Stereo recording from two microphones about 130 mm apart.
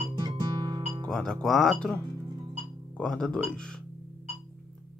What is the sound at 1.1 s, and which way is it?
Speech, 5° left (ahead or behind).